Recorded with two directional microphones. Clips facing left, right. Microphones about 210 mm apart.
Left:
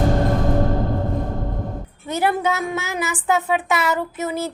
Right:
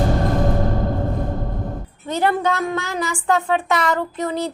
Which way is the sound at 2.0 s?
10° left (ahead or behind).